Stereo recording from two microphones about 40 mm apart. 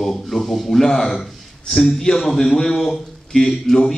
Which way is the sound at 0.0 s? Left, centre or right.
Centre.